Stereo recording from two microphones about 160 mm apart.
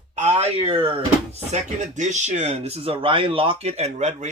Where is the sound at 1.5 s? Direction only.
50° right (ahead or behind).